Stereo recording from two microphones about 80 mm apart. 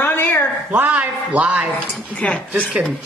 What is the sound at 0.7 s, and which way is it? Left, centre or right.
Speech, centre.